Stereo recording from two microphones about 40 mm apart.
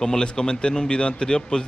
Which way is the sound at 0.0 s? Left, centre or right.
Centre.